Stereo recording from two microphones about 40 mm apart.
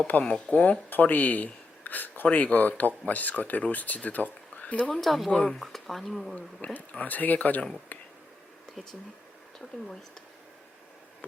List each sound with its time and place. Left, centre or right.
0.2 s speech: left
0.5 s speech: left
0.9 s speech: left
4.9 s speech: centre
5.3 s speech: left
5.5 s speech: centre
6.6 s speech: left